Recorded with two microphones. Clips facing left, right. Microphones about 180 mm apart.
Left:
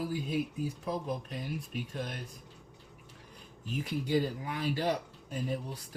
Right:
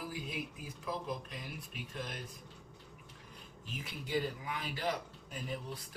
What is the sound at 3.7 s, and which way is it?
Speech, 40° left (ahead or behind).